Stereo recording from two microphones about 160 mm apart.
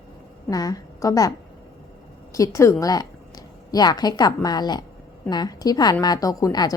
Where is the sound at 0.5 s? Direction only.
25° left (ahead or behind).